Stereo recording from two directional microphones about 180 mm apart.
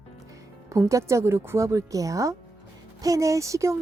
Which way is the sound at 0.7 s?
15° right (ahead or behind).